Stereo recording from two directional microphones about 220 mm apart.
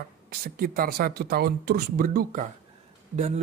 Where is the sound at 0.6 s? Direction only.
40° right (ahead or behind).